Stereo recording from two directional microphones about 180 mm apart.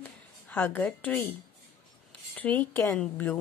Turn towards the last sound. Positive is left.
turn(degrees=10)  # may be behind; listen again after turning